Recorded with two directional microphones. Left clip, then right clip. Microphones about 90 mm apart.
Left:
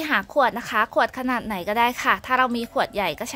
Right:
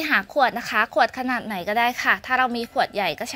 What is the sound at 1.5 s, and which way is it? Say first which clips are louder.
Speech: even; 35° left (ahead or behind).